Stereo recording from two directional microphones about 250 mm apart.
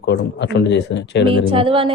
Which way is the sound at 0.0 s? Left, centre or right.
Left.